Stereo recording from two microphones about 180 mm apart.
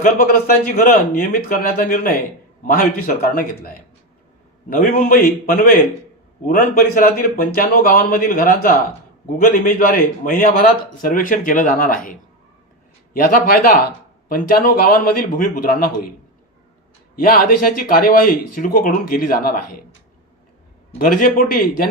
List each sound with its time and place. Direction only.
0.0 s a man's voice: 50° left (ahead or behind)
13.1 s a man's voice: 50° left (ahead or behind)
17.2 s a man's voice: 55° left (ahead or behind)
21.0 s a man's voice: 50° left (ahead or behind)